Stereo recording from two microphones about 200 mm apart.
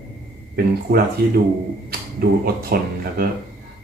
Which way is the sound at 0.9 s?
55° right (ahead or behind).